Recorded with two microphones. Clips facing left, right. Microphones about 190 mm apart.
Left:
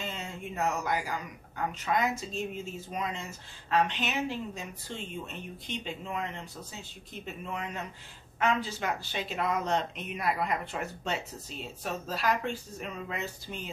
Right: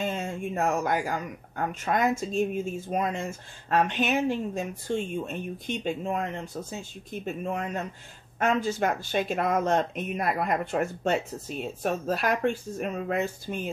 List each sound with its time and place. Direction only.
0.0 s speech: 50° right (ahead or behind)